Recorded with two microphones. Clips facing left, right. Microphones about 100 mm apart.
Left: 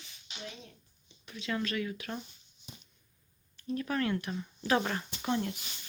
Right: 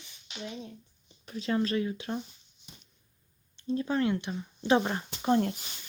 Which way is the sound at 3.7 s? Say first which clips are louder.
Right 4 dB; 25° right (ahead or behind).